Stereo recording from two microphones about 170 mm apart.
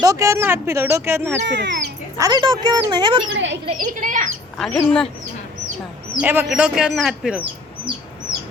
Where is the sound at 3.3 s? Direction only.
90° right.